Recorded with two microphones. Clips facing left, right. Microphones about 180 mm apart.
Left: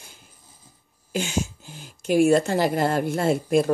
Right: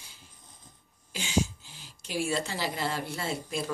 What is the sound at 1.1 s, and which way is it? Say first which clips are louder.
Speech: left 3 dB; 50° left (ahead or behind).